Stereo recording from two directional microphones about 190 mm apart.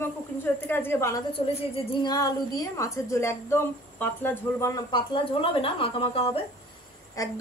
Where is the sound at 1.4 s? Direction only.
25° left (ahead or behind); by 4.7 s 10° left (ahead or behind).